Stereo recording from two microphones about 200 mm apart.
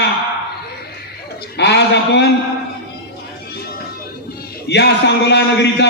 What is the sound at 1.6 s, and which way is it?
Speech, 60° left (ahead or behind).